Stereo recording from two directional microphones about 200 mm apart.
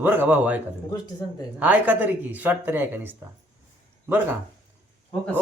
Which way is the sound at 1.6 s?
10° right (ahead or behind).